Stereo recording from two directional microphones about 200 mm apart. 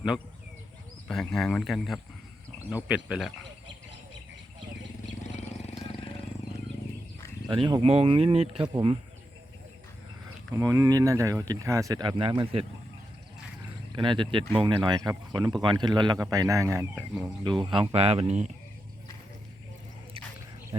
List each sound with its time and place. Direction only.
1.0 s speech: centre (ahead or behind)
5.2 s vehicle: 35° left (ahead or behind)
7.4 s speech: 20° right (ahead or behind)
10.6 s speech: 15° right (ahead or behind)
13.9 s speech: 25° right (ahead or behind)
16.9 s speech: 5° right (ahead or behind)
17.4 s speech: 20° right (ahead or behind)